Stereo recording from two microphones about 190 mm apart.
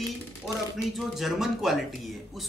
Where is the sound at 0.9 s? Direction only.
Centre (ahead or behind).